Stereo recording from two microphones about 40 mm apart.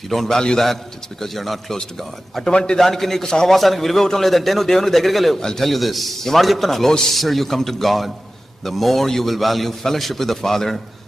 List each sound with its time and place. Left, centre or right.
0.1 s a man's voice: centre
1.2 s a man's voice: centre
2.5 s a man's voice: left
2.7 s a man's voice: centre
5.4 s a man's voice: centre
5.6 s a man's voice: centre